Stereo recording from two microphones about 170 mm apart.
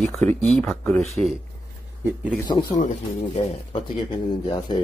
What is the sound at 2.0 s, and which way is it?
Speech, 10° right (ahead or behind).